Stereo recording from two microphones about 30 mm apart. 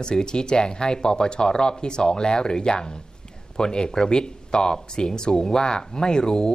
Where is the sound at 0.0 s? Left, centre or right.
Left.